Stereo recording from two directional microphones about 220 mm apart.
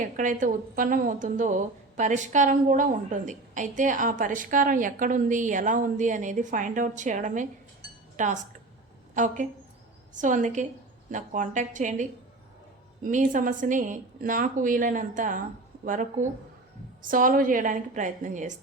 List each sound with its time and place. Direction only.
0.0 s a woman's voice: 35° right (ahead or behind)